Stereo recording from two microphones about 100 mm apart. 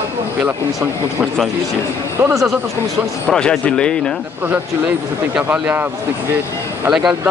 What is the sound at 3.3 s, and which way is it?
Speech, 10° left (ahead or behind).